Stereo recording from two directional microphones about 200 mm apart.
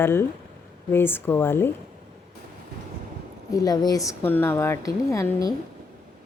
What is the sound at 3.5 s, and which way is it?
Speech, 20° left (ahead or behind).